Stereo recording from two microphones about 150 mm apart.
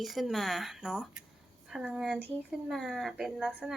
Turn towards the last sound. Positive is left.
turn(degrees=0)  # may be behind; listen again after turning